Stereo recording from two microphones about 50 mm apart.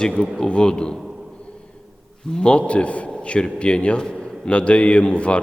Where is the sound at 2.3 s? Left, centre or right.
Centre.